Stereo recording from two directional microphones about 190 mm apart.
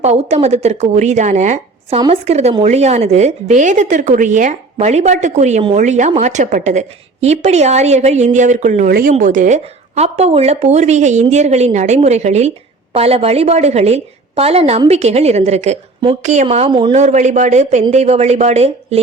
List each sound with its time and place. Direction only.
0.0 s a woman's voice: 35° right (ahead or behind)
16.9 s a woman's voice: 40° right (ahead or behind)